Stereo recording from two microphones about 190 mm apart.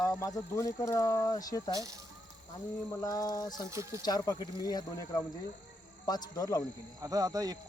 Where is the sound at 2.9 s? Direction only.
20° left (ahead or behind).